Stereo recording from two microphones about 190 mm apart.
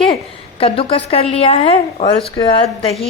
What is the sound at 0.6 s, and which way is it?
A woman's voice, 30° left (ahead or behind).